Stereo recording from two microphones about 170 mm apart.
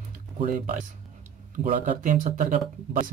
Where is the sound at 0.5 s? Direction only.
55° right (ahead or behind).